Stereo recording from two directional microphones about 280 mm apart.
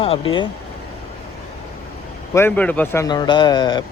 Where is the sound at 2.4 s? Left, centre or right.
Centre.